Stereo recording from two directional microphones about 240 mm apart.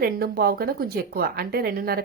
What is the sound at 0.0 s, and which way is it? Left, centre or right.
Speech, right.